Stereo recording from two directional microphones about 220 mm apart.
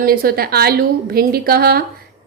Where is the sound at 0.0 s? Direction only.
40° right (ahead or behind).